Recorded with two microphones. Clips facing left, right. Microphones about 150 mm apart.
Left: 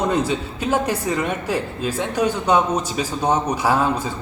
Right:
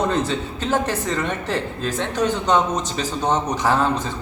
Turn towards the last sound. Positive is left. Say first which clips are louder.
# even
turn(degrees=10)  # may be behind; listen again after turning